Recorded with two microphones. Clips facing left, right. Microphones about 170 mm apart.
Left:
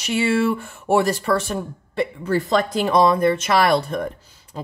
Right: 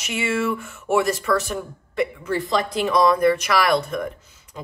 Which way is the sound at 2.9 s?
25° left (ahead or behind).